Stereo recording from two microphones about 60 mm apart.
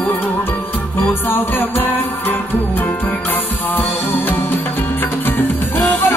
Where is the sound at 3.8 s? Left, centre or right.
Left.